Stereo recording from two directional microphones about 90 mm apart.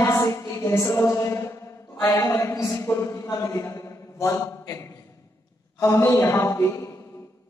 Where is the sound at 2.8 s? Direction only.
30° left (ahead or behind).